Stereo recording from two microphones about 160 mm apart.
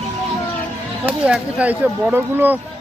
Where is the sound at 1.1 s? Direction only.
10° right (ahead or behind).